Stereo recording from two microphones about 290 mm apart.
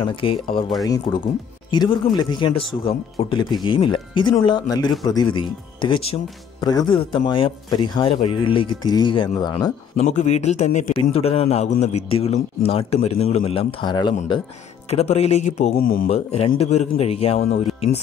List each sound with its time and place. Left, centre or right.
0.0 s a man's voice: centre